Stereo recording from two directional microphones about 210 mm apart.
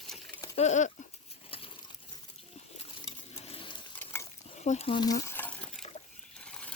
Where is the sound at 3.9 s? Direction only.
10° left (ahead or behind).